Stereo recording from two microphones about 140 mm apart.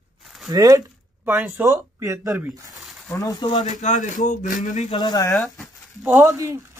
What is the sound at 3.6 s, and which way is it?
Speech, 60° left (ahead or behind).